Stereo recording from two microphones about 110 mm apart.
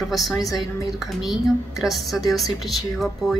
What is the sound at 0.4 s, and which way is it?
Speech, 30° left (ahead or behind).